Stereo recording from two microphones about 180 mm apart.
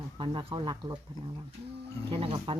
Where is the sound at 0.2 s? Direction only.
25° right (ahead or behind).